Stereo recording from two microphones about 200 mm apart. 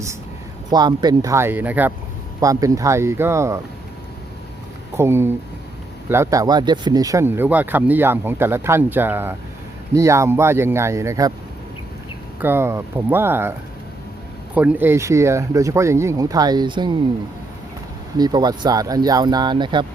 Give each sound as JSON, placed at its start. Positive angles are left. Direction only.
{"t": 0.7, "sound": "speech", "side_deg": -20}
{"t": 4.9, "sound": "speech", "side_deg": -10}
{"t": 12.4, "sound": "speech", "side_deg": -10}
{"t": 14.5, "sound": "speech", "side_deg": -10}
{"t": 18.2, "sound": "speech", "side_deg": -20}